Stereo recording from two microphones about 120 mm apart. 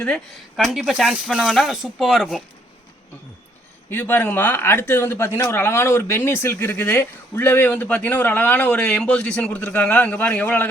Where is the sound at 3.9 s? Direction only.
15° left (ahead or behind).